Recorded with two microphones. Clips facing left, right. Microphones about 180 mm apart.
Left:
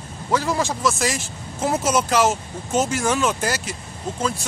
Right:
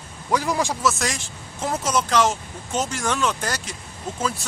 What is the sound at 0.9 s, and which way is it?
Speech, centre (ahead or behind).